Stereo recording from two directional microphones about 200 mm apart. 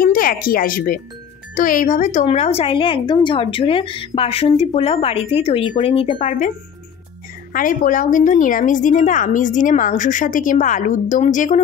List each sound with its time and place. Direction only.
0.0 s speech: 45° left (ahead or behind); by 6.5 s 30° left (ahead or behind)
7.5 s a woman's voice: 40° left (ahead or behind)